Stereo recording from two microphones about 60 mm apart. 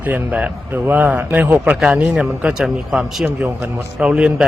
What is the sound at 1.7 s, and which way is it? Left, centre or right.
Speech, centre.